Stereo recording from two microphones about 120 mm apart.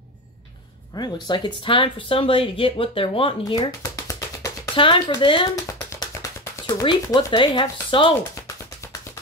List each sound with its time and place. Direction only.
0.9 s speech: 35° left (ahead or behind)
4.7 s speech: 45° left (ahead or behind)
5.7 s a sound: 30° left (ahead or behind)
6.6 s speech: 40° left (ahead or behind)